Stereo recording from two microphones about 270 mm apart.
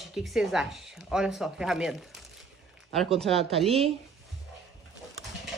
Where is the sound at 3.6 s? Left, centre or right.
Right.